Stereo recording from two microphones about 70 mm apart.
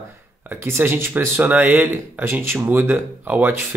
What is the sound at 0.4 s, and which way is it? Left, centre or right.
Speech, right.